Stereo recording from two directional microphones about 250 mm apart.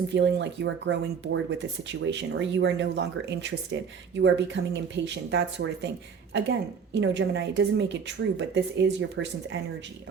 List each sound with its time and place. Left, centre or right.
0.1 s speech: right